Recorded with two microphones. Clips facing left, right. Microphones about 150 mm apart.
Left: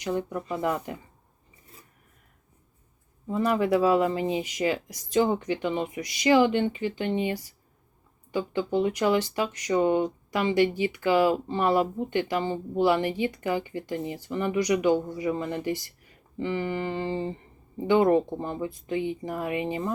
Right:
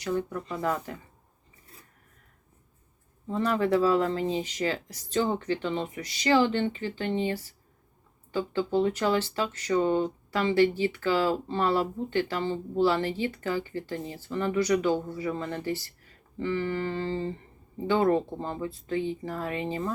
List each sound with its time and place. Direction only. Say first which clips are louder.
0.0 s speech: left 1 dB; 20° left (ahead or behind)
3.2 s speech: left 2 dB; 10° left (ahead or behind)